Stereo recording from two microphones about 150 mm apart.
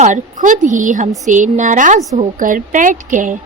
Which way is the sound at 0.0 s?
55° right (ahead or behind).